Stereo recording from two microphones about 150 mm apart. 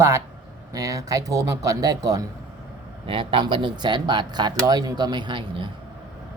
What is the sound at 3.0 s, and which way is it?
Speech, 35° right (ahead or behind).